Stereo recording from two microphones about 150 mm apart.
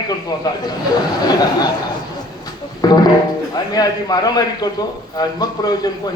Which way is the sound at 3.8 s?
25° left (ahead or behind).